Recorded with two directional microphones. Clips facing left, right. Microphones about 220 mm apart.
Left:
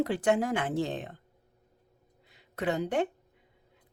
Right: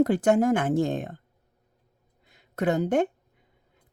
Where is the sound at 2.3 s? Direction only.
45° right (ahead or behind).